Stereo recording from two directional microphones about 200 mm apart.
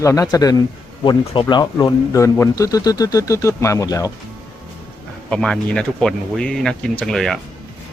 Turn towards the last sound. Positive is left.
turn(degrees=0)  # may be behind; listen again after turning